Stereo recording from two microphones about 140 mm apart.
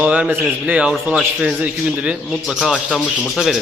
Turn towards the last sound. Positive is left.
turn(degrees=0)  # may be behind; listen again after turning